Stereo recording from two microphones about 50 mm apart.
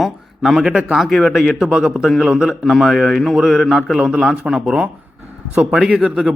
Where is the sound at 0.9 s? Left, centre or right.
Centre.